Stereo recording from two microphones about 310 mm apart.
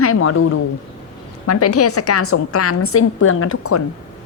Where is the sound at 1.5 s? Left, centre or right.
Left.